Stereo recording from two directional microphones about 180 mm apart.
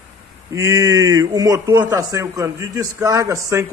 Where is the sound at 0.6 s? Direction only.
15° right (ahead or behind).